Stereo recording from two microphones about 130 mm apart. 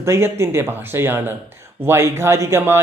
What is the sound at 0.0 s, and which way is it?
Speech, 20° right (ahead or behind).